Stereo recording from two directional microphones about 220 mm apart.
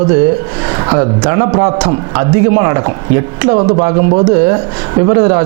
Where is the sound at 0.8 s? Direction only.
20° right (ahead or behind).